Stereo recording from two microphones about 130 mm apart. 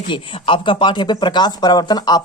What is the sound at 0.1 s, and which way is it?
Speech, 40° left (ahead or behind).